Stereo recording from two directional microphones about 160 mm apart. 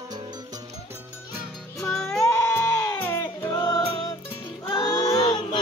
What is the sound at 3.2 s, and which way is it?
Music, 20° left (ahead or behind).